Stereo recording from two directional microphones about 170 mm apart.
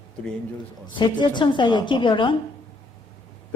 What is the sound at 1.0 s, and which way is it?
A woman's voice, 25° left (ahead or behind).